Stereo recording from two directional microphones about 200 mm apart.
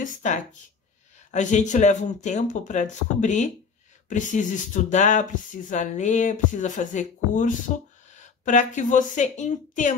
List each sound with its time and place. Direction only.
0.0 s speech: 40° left (ahead or behind)